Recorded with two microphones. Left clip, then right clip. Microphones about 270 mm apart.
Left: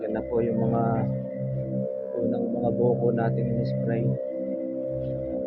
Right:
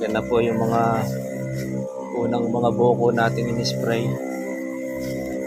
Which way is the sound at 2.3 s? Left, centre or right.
Centre.